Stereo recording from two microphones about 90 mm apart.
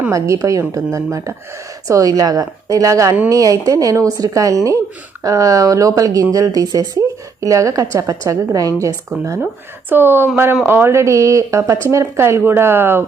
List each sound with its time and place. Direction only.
0.1 s speech: 35° right (ahead or behind)
9.9 s speech: 25° right (ahead or behind)